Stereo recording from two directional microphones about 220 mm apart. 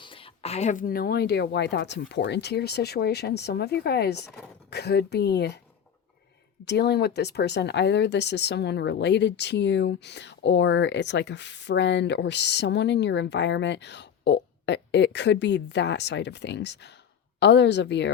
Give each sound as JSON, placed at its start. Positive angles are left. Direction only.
{"t": 0.0, "sound": "speech", "side_deg": 25}
{"t": 4.3, "sound": "speech", "side_deg": 5}
{"t": 4.7, "sound": "speech", "side_deg": 50}
{"t": 6.7, "sound": "speech", "side_deg": 50}